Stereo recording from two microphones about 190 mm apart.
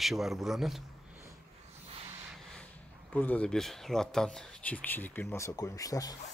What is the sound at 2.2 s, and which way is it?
Speech, centre (ahead or behind).